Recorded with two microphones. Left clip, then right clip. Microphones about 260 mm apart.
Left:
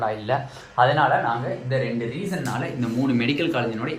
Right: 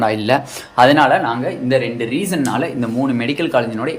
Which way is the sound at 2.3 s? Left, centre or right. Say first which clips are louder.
Right 9 dB; right.